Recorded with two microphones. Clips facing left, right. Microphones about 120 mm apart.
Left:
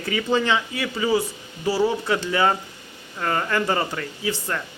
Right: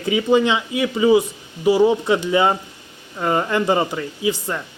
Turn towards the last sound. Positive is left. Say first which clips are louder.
# right 4 dB
turn(degrees=-15)  # may be behind; listen again after turning